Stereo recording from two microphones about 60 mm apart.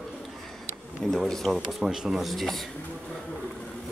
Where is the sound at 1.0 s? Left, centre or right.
Centre.